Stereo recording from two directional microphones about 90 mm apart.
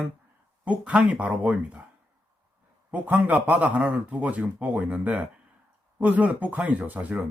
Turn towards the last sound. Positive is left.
turn(degrees=-20)  # may be behind; listen again after turning